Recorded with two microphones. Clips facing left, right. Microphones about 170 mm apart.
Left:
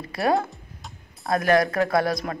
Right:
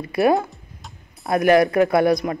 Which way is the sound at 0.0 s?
20° right (ahead or behind).